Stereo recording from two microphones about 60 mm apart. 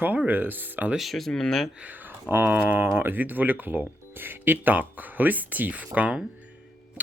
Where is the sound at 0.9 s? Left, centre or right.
Centre.